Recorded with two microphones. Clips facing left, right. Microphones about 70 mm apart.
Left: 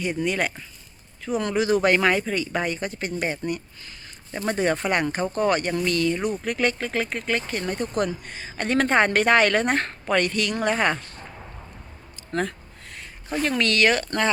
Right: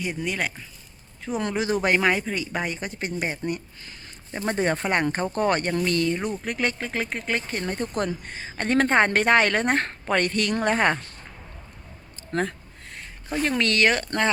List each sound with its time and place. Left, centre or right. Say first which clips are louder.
0.0 s speech: left 3 dB; centre
1.2 s speech: left 3 dB; right
12.3 s a sound: even; right
13.6 s speech: left 1 dB; right